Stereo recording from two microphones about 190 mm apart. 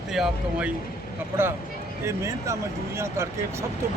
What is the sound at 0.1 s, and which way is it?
Speech, centre (ahead or behind).